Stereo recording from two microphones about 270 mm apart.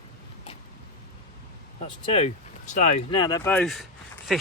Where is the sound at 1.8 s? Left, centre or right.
Left.